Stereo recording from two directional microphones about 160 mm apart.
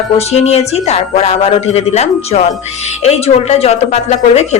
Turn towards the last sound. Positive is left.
turn(degrees=40)  # may be behind; listen again after turning